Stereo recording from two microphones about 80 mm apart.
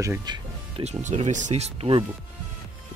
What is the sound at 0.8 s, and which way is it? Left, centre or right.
Speech, right.